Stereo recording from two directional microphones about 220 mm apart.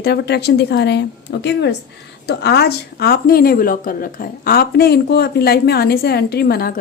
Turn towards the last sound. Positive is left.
turn(degrees=45)  # may be behind; listen again after turning